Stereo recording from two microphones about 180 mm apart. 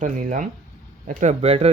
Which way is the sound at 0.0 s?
45° right (ahead or behind).